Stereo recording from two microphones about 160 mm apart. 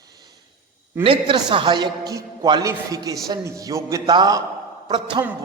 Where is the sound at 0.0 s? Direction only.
25° right (ahead or behind).